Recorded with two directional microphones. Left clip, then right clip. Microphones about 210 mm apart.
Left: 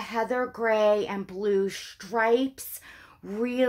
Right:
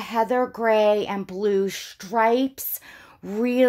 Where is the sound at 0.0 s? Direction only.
40° right (ahead or behind).